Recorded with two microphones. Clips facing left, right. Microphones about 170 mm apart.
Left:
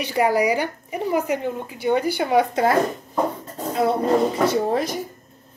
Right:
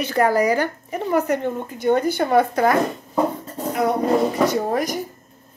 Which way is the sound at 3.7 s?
25° left (ahead or behind).